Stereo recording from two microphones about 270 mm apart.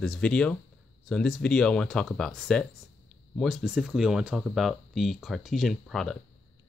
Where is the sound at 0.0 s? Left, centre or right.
Centre.